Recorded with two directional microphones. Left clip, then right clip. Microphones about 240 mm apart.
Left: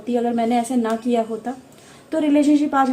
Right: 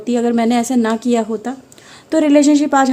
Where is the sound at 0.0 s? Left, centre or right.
Right.